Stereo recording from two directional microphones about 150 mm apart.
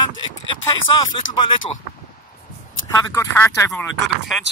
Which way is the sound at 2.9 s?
20° left (ahead or behind).